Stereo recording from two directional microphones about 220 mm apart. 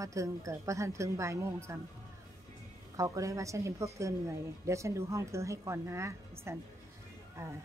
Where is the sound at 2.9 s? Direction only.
15° right (ahead or behind).